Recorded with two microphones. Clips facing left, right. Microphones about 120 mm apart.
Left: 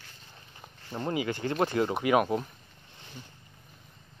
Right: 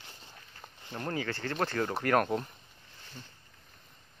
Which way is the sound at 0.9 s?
15° left (ahead or behind).